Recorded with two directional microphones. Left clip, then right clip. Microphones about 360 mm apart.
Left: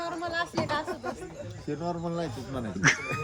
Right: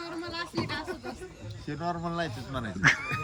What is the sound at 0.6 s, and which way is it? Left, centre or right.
Chatter, centre.